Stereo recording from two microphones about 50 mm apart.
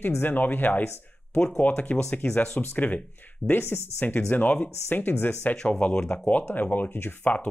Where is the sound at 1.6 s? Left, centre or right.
Left.